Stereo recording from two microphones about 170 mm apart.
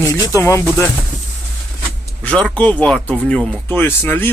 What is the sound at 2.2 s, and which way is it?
Speech, 5° left (ahead or behind).